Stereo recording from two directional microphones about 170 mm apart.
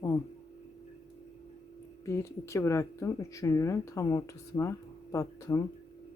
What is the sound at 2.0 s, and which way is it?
Speech, 15° left (ahead or behind).